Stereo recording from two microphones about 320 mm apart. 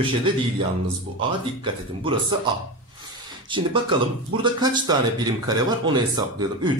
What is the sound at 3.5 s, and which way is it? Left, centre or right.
A man's voice, centre.